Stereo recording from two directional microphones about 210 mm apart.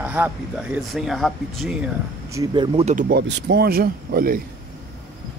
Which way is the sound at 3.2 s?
50° right (ahead or behind).